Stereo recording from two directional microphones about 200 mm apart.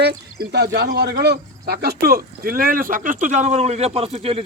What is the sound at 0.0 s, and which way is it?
Speech, 55° right (ahead or behind).